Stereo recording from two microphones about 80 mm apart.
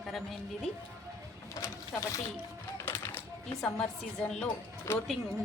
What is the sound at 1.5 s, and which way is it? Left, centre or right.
Speech, left.